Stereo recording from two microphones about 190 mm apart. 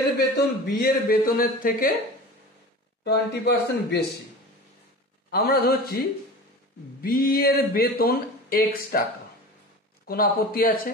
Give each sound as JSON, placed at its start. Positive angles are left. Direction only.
{"t": 0.2, "sound": "speech", "side_deg": 55}
{"t": 3.0, "sound": "speech", "side_deg": 60}
{"t": 5.3, "sound": "speech", "side_deg": 55}
{"t": 10.0, "sound": "speech", "side_deg": 50}